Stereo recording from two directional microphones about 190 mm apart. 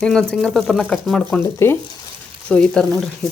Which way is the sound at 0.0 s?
5° left (ahead or behind).